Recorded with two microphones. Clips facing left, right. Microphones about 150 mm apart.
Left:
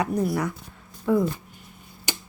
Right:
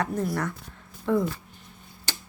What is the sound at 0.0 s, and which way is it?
Speech, 10° left (ahead or behind).